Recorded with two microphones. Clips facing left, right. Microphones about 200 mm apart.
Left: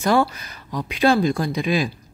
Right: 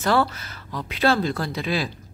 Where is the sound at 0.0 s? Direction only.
15° left (ahead or behind).